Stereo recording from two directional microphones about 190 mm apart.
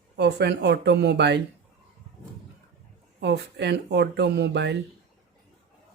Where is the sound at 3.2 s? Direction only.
65° right (ahead or behind).